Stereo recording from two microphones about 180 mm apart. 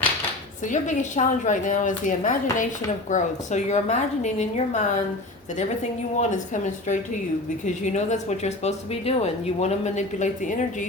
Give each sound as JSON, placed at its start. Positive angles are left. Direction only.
{"t": 0.6, "sound": "a woman's voice", "side_deg": 45}
{"t": 6.1, "sound": "a woman's voice", "side_deg": 40}